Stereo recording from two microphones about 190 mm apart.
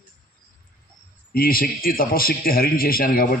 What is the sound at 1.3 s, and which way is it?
A man's voice, 50° left (ahead or behind).